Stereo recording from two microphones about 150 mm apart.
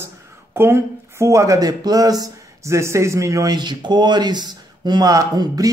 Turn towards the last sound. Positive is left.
turn(degrees=-25)  # may be behind; listen again after turning